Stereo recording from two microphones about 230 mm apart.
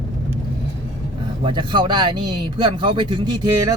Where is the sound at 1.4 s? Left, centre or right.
Right.